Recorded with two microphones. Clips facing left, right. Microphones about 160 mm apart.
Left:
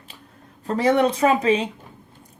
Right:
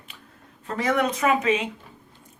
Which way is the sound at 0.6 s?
30° left (ahead or behind).